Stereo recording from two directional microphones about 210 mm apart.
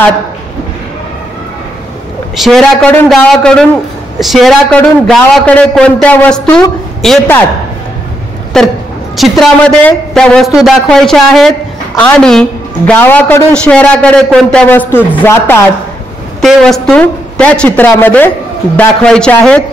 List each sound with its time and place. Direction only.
2.3 s a woman's voice: centre (ahead or behind)
8.5 s a woman's voice: centre (ahead or behind)